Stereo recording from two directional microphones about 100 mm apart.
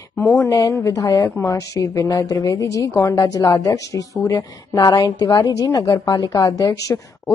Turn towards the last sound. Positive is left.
turn(degrees=35)  # may be behind; listen again after turning